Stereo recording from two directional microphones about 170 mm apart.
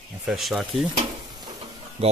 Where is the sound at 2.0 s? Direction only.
35° right (ahead or behind).